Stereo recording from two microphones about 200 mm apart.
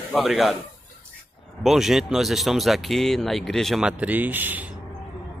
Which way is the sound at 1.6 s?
Centre (ahead or behind).